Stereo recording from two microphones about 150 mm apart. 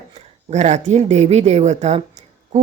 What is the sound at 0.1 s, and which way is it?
Speech, 50° right (ahead or behind).